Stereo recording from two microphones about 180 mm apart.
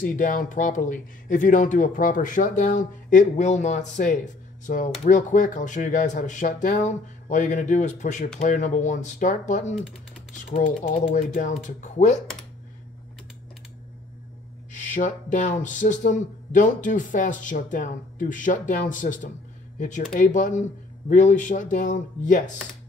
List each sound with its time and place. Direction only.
0.0 s speech: 45° left (ahead or behind)
14.7 s speech: 45° left (ahead or behind)